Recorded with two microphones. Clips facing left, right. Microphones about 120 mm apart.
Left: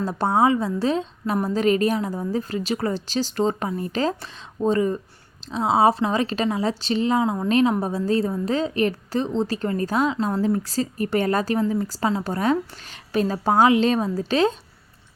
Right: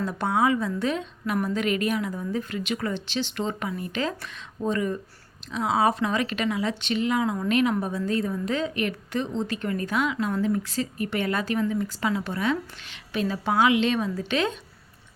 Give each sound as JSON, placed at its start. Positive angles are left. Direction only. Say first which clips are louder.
{"t": 0.0, "sound": "a woman's voice", "louder": "left 4 dB", "side_deg": 35}